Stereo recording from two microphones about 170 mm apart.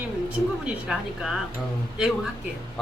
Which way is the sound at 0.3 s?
5° right (ahead or behind).